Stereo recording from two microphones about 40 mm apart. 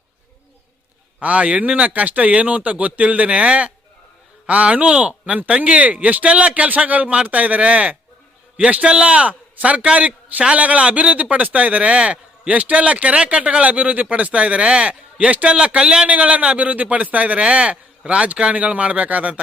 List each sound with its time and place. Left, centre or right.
1.2 s a man's voice: right
16.0 s speech: right
18.5 s speech: right